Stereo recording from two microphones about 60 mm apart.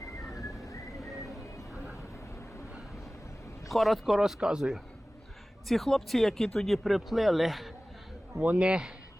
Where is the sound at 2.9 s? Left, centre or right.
Left.